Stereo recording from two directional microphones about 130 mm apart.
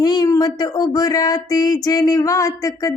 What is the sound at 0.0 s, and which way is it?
Speech, 30° left (ahead or behind).